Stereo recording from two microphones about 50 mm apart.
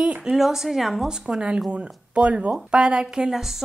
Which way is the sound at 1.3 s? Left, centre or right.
Centre.